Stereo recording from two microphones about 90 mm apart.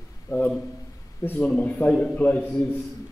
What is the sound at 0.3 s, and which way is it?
Speech, 35° left (ahead or behind).